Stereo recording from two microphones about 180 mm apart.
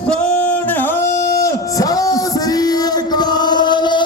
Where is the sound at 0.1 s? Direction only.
10° left (ahead or behind).